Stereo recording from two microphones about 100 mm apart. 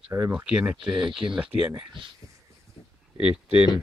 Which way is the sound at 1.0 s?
60° right (ahead or behind).